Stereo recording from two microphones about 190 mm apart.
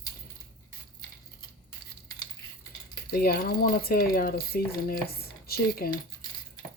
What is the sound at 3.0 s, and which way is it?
Speech, 50° left (ahead or behind).